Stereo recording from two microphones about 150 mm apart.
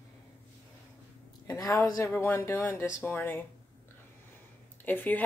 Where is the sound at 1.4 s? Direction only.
20° left (ahead or behind).